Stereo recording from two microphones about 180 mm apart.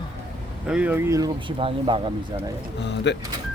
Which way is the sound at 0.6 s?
5° right (ahead or behind).